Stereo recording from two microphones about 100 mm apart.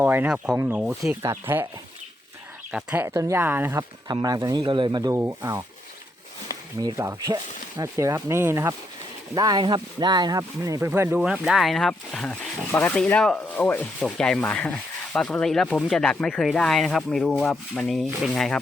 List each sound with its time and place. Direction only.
0.0 s speech: 20° right (ahead or behind)
2.9 s speech: 20° right (ahead or behind)
4.1 s speech: 40° right (ahead or behind)
4.6 s speech: 55° right (ahead or behind)
5.1 s speech: 25° right (ahead or behind)
6.9 s speech: 30° right (ahead or behind)
9.3 s speech: 40° right (ahead or behind)
10.6 s speech: 30° right (ahead or behind)
11.2 s speech: 5° right (ahead or behind); by 13.8 s 15° left (ahead or behind)
14.0 s speech: 5° left (ahead or behind)